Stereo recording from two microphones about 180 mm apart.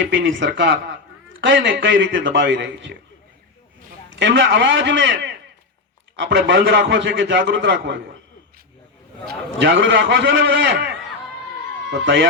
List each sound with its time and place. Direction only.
0.0 s a man's voice: 90° right
4.1 s a man's voice: 90° right
9.6 s a man's voice: 90° right